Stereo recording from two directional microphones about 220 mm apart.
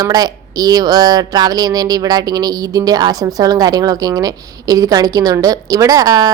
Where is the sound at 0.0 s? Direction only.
15° right (ahead or behind).